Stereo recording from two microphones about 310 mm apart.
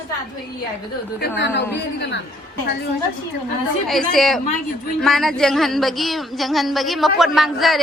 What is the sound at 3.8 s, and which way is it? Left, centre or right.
Speech, centre.